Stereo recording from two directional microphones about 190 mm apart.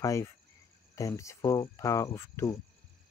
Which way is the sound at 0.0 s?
15° left (ahead or behind).